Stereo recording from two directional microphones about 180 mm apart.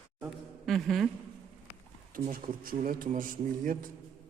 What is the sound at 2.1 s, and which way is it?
A man's voice, 50° right (ahead or behind).